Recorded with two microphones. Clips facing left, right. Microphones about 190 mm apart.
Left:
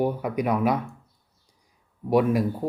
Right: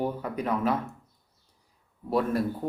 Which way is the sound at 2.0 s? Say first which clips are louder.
Left 5 dB; 15° left (ahead or behind).